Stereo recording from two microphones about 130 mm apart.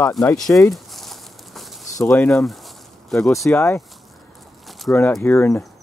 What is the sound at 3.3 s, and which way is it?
Speech, 20° left (ahead or behind).